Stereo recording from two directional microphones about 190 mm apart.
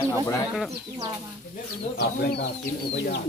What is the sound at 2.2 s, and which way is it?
Speech, 60° left (ahead or behind).